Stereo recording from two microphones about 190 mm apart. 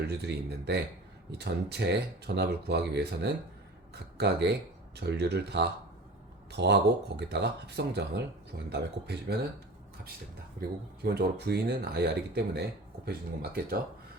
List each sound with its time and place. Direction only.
0.0 s speech: 60° right (ahead or behind)
10.6 s speech: 55° right (ahead or behind)